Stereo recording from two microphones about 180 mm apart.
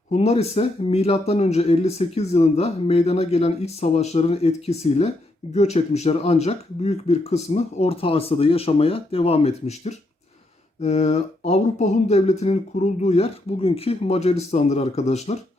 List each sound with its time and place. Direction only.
0.1 s speech: 35° left (ahead or behind)